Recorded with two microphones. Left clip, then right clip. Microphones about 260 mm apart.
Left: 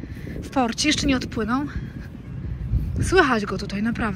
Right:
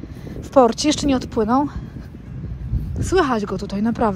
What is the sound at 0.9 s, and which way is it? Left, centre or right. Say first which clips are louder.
Speech: right 4 dB; centre.